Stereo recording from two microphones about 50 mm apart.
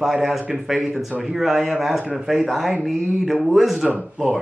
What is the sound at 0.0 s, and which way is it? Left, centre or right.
A man's voice, centre.